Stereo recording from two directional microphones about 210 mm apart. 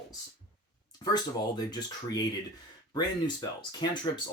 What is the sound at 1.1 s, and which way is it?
Speech, 20° left (ahead or behind).